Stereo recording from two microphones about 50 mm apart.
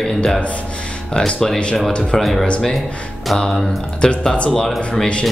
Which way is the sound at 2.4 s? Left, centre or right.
Left.